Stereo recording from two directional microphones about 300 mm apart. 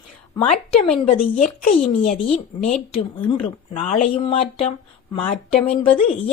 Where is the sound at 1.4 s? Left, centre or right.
Left.